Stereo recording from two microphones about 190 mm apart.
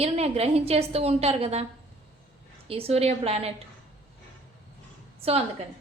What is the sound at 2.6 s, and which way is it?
Speech, 30° right (ahead or behind).